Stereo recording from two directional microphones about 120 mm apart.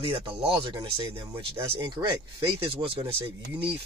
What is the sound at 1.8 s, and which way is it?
Speech, 35° right (ahead or behind).